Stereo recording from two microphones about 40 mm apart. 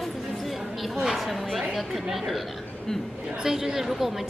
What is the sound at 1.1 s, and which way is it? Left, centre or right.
A woman's voice, centre.